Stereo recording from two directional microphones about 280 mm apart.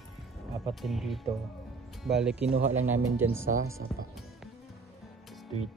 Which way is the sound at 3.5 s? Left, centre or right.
Right.